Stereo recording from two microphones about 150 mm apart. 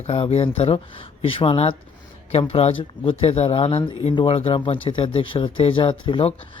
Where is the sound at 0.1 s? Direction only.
40° left (ahead or behind).